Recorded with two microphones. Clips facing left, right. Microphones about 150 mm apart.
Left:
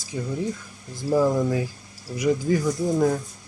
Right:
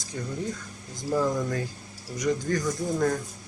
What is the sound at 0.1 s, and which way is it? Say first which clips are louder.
Speech: left 4 dB; 15° left (ahead or behind).